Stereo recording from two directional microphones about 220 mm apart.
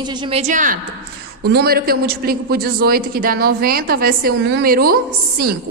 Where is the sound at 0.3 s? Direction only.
30° right (ahead or behind).